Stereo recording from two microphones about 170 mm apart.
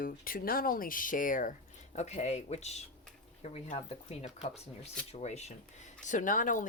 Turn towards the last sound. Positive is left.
turn(degrees=50)  # may be behind; listen again after turning